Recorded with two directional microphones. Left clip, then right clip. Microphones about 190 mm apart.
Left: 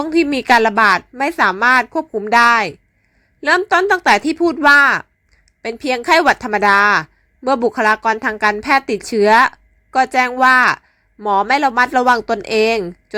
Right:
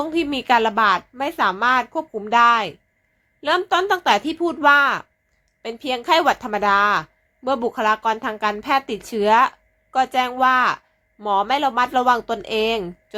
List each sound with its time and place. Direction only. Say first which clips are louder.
0.0 s a woman's voice: left 6 dB; 25° left (ahead or behind)